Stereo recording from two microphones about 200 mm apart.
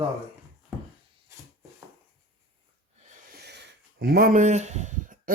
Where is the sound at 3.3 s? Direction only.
55° right (ahead or behind).